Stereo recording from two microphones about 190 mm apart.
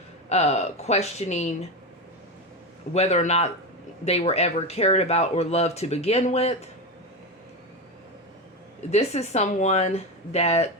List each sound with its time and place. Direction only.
0.3 s speech: 35° left (ahead or behind)
2.9 s speech: 35° left (ahead or behind)
8.9 s speech: 35° left (ahead or behind)